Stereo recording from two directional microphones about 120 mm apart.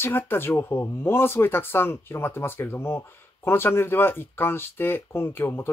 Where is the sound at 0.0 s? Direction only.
20° left (ahead or behind).